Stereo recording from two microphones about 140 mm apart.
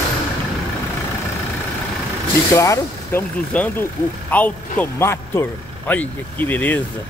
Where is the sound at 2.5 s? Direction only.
20° left (ahead or behind).